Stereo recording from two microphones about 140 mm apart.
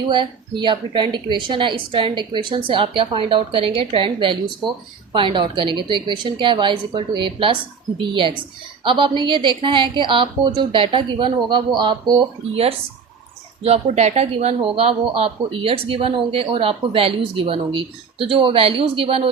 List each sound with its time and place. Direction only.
0.1 s speech: 35° right (ahead or behind)
13.6 s speech: 50° right (ahead or behind)